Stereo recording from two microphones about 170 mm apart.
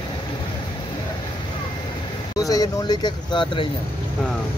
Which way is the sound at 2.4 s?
20° left (ahead or behind).